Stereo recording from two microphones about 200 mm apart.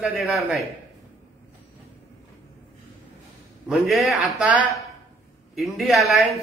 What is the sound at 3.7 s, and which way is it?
A man's voice, centre (ahead or behind).